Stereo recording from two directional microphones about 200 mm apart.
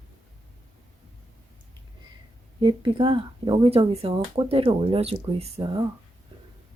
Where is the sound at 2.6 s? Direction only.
25° right (ahead or behind).